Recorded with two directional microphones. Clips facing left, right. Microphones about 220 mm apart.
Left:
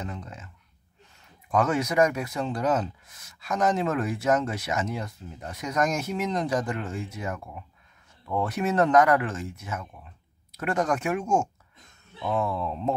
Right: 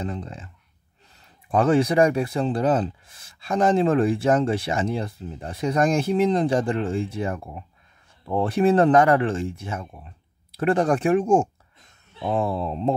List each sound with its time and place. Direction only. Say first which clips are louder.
0.0 s speech: right 6 dB; 30° right (ahead or behind)
1.5 s speech: right 6 dB; 30° right (ahead or behind)